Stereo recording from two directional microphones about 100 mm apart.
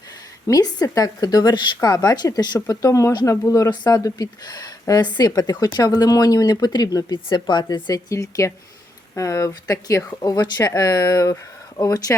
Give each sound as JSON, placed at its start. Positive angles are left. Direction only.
{"t": 0.4, "sound": "speech", "side_deg": 40}